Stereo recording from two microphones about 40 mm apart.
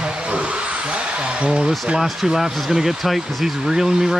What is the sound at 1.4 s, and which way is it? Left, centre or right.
Speech, centre.